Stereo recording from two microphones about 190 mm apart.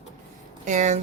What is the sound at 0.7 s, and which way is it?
Speech, 40° right (ahead or behind).